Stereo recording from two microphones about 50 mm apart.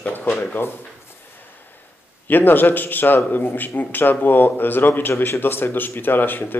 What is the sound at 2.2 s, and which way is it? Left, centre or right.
A man's voice, left.